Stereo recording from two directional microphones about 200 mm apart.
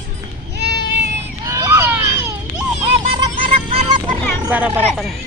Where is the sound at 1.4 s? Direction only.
15° right (ahead or behind).